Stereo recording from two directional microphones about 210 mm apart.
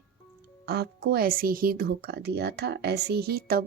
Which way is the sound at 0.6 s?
50° right (ahead or behind).